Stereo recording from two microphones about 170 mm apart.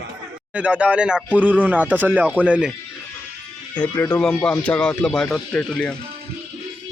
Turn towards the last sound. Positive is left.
turn(degrees=5)  # may be behind; listen again after turning